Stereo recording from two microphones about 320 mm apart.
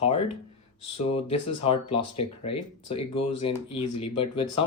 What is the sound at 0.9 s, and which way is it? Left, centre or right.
Speech, centre.